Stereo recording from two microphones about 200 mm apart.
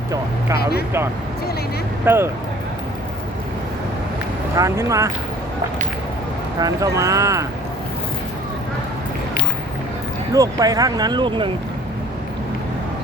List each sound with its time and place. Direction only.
2.0 s speech: 10° right (ahead or behind)
4.5 s speech: 15° right (ahead or behind)
6.6 s speech: 15° right (ahead or behind)
10.3 s speech: 15° right (ahead or behind)